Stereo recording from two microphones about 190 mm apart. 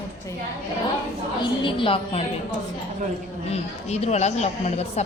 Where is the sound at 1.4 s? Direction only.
25° left (ahead or behind).